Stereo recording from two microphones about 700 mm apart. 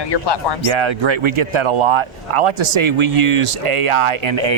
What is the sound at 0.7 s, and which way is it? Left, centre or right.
Speech, right.